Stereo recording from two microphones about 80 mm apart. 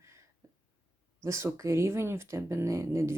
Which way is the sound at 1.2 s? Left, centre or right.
Right.